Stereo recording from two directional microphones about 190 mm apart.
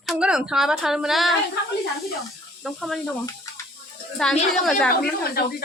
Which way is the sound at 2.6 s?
Centre (ahead or behind).